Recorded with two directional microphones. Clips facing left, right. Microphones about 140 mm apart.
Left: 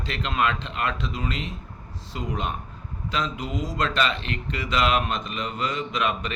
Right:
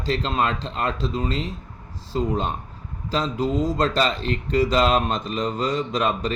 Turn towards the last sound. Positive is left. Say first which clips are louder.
# right 3 dB
turn(degrees=-35)  # may be behind; listen again after turning